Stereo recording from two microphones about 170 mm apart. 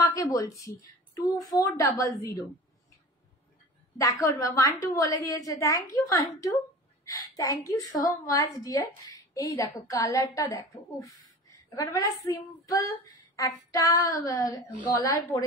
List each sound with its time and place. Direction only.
0.0 s a woman's voice: 20° left (ahead or behind)
4.0 s a woman's voice: 20° left (ahead or behind)